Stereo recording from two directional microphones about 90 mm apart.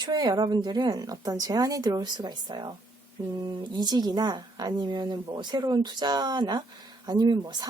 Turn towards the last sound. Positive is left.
turn(degrees=-50)  # may be behind; listen again after turning